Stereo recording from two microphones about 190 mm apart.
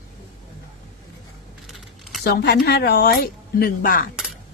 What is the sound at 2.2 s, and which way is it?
Speech, 55° left (ahead or behind).